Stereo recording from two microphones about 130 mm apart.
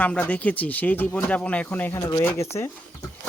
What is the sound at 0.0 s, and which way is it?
Speech, 10° left (ahead or behind).